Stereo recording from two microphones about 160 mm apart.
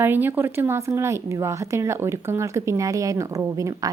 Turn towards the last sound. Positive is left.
turn(degrees=-20)  # may be behind; listen again after turning